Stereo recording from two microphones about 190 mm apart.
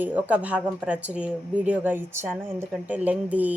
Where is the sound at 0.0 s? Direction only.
10° right (ahead or behind).